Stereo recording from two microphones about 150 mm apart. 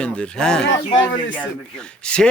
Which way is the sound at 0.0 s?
5° left (ahead or behind).